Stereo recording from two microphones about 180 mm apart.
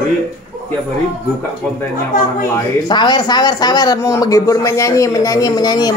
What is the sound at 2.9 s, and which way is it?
A man's voice, 25° left (ahead or behind).